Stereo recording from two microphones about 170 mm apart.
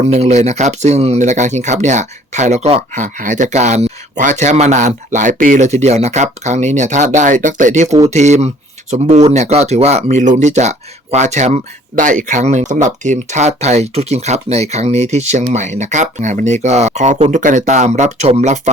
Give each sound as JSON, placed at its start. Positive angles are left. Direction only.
{"t": 0.0, "sound": "speech", "side_deg": -40}